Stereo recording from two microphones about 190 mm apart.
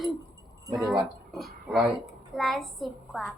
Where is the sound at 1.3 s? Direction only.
Centre (ahead or behind).